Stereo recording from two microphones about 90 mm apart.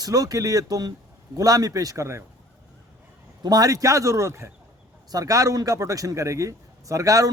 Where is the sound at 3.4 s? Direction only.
40° right (ahead or behind).